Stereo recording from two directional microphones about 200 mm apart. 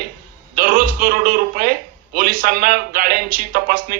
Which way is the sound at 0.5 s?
45° right (ahead or behind).